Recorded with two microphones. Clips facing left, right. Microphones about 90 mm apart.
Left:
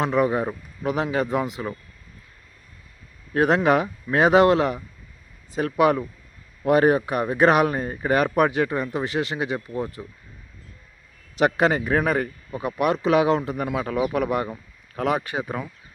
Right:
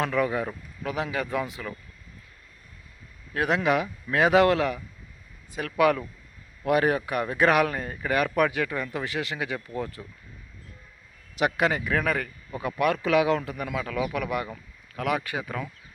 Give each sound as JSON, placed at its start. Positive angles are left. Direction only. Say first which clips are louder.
{"t": 0.0, "sound": "speech", "louder": "left 4 dB", "side_deg": 25}
{"t": 3.3, "sound": "speech", "louder": "left 5 dB", "side_deg": 35}
{"t": 11.3, "sound": "speech", "louder": "left 5 dB", "side_deg": 30}